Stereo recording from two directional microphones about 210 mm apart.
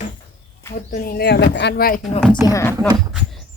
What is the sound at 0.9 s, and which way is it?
Speech, 45° left (ahead or behind).